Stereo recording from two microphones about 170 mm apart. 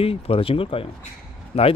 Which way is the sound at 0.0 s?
35° left (ahead or behind).